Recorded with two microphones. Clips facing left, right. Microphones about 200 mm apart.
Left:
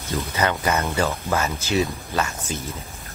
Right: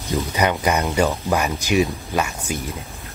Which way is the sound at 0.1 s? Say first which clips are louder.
Right 3 dB; 15° right (ahead or behind).